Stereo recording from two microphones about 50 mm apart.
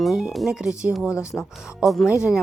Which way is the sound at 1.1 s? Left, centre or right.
Left.